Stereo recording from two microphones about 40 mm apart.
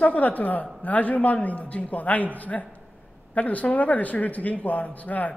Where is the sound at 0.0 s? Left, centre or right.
Left.